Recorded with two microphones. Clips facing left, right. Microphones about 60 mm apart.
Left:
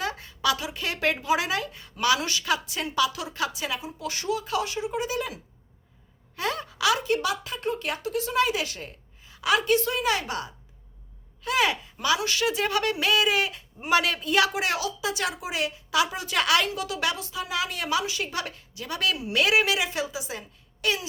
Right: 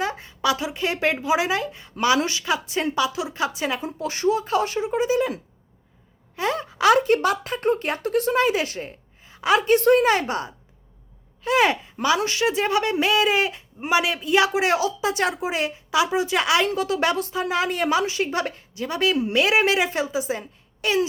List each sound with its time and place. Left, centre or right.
0.0 s a woman's voice: right
4.9 s a woman's voice: right
6.3 s a sound: right
6.8 s a woman's voice: right
8.4 s a woman's voice: right
9.7 s a woman's voice: right
14.0 s a woman's voice: centre
16.6 s a woman's voice: right